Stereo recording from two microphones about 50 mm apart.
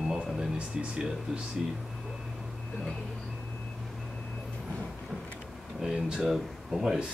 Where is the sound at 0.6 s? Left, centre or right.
Right.